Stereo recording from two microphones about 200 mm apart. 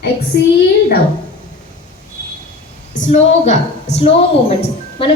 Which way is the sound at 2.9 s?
40° left (ahead or behind).